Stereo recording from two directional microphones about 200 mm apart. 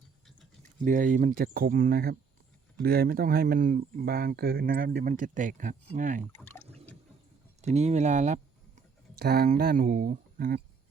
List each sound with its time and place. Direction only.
0.9 s speech: 40° right (ahead or behind)
6.3 s speech: 10° left (ahead or behind)
7.6 s speech: 35° right (ahead or behind)
9.1 s speech: 50° right (ahead or behind)